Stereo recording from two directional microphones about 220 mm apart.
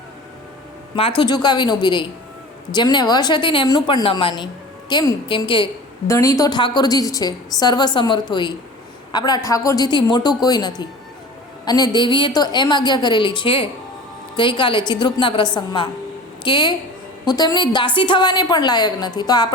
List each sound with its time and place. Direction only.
0.9 s a woman's voice: 25° left (ahead or behind)